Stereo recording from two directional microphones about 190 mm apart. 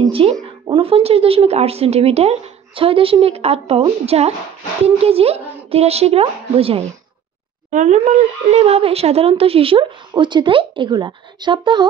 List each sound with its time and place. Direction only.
0.1 s a woman's voice: 30° right (ahead or behind)